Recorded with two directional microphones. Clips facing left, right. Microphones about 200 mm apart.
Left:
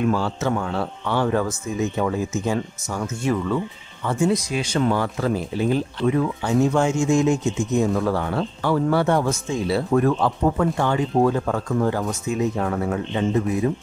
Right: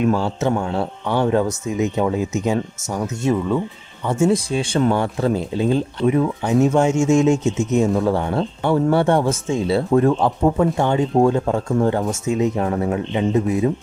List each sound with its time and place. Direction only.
0.0 s speech: 20° right (ahead or behind)